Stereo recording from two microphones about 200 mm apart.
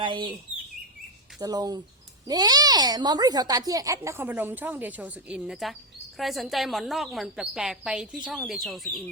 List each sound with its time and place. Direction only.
0.0 s speech: 25° right (ahead or behind)
1.4 s a woman's voice: 20° right (ahead or behind); by 9.0 s centre (ahead or behind)